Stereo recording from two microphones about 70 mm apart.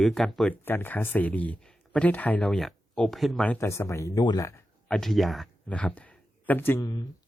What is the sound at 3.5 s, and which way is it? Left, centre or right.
Speech, left.